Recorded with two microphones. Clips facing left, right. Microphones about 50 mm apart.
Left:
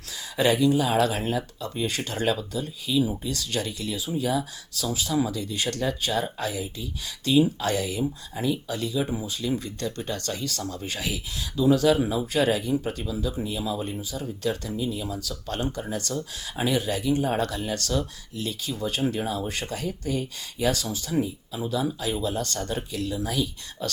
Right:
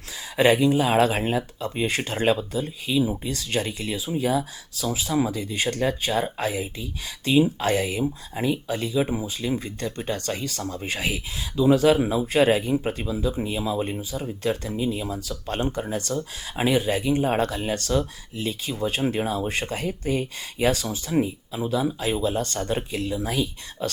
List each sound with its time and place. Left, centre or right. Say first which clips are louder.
0.3 s speech: right 3 dB; right